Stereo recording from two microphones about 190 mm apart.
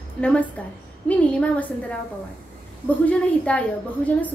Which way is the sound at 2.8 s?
5° left (ahead or behind).